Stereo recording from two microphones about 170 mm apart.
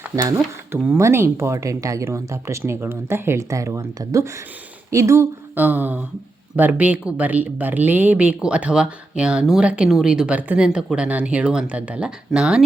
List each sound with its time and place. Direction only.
0.2 s speech: 15° right (ahead or behind)